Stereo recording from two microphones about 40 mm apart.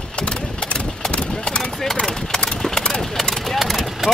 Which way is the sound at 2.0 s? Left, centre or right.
Centre.